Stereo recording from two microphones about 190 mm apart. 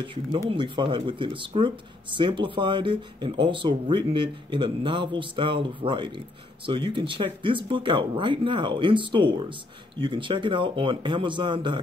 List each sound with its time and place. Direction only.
0.0 s speech: 25° right (ahead or behind)